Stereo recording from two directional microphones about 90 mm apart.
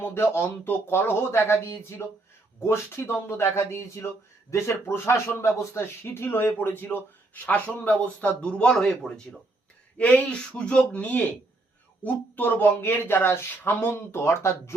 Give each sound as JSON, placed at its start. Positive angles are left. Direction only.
{"t": 0.0, "sound": "speech", "side_deg": 25}